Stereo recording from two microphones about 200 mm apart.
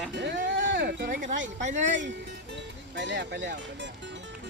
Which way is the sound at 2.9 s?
65° right (ahead or behind).